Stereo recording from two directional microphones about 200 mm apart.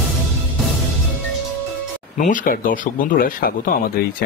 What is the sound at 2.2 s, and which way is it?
Speech, 40° left (ahead or behind).